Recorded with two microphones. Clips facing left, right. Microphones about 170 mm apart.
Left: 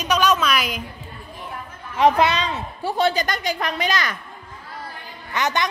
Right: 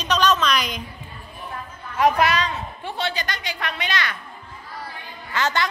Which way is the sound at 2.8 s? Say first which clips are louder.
Left 10 dB; 40° left (ahead or behind).